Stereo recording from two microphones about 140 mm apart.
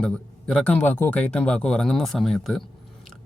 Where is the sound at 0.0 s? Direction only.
5° left (ahead or behind).